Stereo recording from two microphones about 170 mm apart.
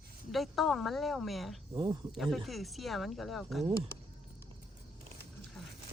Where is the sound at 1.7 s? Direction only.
25° right (ahead or behind).